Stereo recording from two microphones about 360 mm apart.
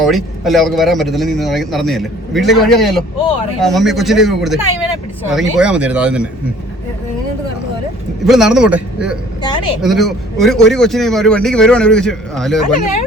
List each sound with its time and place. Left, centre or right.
0.0 s a man's voice: centre
8.2 s a man's voice: centre
12.8 s speech: centre